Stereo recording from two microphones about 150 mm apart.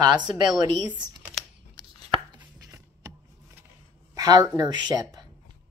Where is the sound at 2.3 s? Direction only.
20° right (ahead or behind).